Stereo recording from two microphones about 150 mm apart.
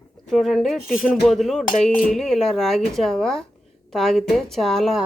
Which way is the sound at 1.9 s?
65° left (ahead or behind).